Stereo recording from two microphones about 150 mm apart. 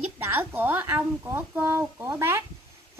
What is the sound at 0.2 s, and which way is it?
A child's voice, 15° right (ahead or behind).